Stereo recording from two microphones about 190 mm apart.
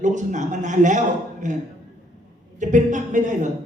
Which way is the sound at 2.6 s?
40° right (ahead or behind).